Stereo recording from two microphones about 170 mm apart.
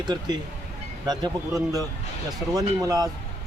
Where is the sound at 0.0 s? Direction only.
25° right (ahead or behind).